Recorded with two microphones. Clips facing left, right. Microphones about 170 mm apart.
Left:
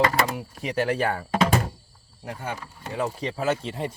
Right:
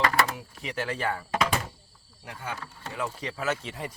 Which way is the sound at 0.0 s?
20° left (ahead or behind).